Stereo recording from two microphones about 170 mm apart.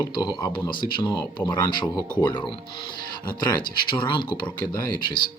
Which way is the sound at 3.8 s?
30° left (ahead or behind).